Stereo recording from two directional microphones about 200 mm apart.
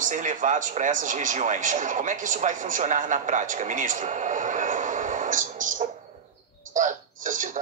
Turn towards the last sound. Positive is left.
turn(degrees=-40)  # may be behind; listen again after turning